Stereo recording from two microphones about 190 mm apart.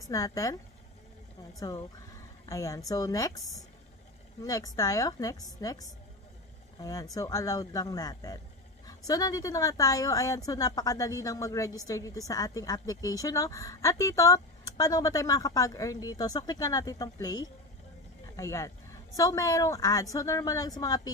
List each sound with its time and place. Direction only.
0.0 s a woman's voice: 20° left (ahead or behind)
1.6 s a woman's voice: 20° left (ahead or behind)
4.4 s a woman's voice: 20° left (ahead or behind)